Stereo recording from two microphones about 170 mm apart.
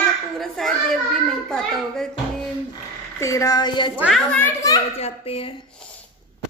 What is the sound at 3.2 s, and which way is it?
Speech, 20° left (ahead or behind).